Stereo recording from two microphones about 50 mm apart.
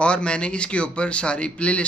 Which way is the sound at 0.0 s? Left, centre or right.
Left.